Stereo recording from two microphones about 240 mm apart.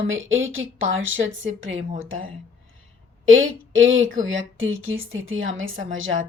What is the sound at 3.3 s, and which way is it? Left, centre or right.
Speech, right.